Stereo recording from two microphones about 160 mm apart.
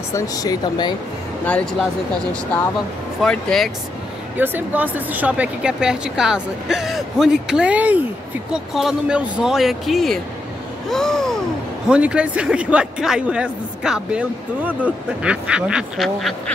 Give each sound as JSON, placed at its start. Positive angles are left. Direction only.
{"t": 0.1, "sound": "speech", "side_deg": 20}
{"t": 1.4, "sound": "speech", "side_deg": 10}
{"t": 3.2, "sound": "speech", "side_deg": 5}
{"t": 4.4, "sound": "a man's voice", "side_deg": -10}